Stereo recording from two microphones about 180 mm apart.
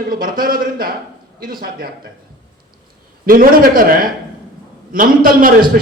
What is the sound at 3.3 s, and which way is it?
A man's voice, 50° right (ahead or behind).